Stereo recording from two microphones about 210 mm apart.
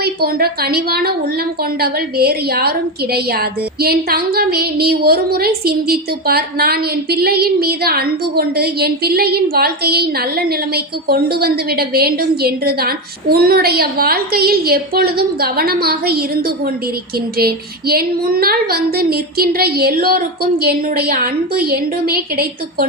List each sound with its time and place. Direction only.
0.0 s a woman's voice: 45° right (ahead or behind)